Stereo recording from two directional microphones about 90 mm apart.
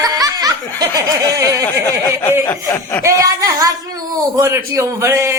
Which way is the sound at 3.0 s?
40° right (ahead or behind).